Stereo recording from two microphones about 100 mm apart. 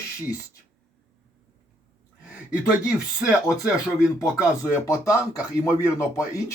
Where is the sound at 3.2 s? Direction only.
5° right (ahead or behind).